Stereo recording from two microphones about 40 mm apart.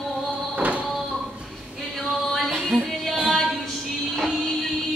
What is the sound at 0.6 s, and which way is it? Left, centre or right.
Music, right.